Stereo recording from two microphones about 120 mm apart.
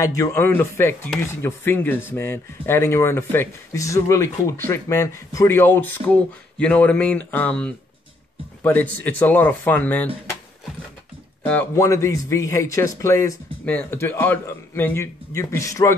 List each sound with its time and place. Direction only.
0.0 s speech: 25° left (ahead or behind)
11.7 s speech: 25° left (ahead or behind)
13.7 s speech: 15° left (ahead or behind)